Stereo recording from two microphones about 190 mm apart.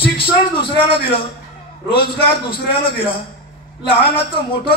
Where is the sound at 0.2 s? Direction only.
25° left (ahead or behind).